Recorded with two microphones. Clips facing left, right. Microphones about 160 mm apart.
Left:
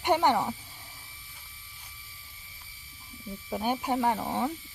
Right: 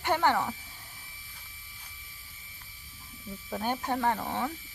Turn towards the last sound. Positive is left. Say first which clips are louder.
# left 2 dB
turn(degrees=15)  # may be behind; listen again after turning